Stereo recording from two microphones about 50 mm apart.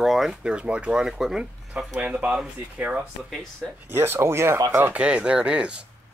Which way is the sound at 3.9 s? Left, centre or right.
Right.